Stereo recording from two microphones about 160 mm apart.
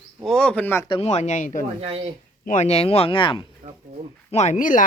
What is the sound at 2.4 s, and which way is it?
Speech, 55° left (ahead or behind).